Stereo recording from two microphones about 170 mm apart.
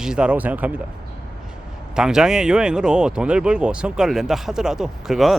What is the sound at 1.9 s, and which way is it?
Speech, 5° right (ahead or behind).